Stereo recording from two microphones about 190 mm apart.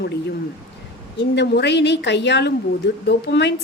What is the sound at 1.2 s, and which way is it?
Speech, 65° left (ahead or behind).